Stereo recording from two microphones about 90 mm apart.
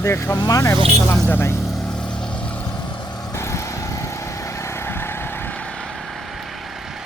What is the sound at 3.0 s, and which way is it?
Vehicle, 50° left (ahead or behind).